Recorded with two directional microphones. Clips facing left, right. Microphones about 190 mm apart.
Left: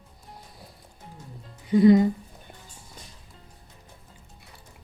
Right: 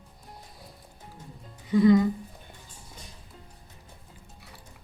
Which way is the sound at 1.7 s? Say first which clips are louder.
Left 3 dB; 25° left (ahead or behind).